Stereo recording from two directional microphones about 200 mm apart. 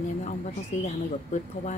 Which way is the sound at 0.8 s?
35° left (ahead or behind).